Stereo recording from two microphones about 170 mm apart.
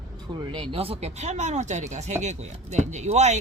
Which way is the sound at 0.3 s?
30° right (ahead or behind).